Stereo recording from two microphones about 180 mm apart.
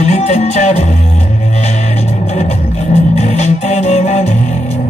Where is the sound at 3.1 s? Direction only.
40° left (ahead or behind).